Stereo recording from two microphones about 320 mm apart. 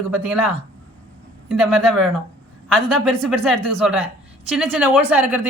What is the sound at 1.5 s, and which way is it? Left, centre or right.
A woman's voice, centre.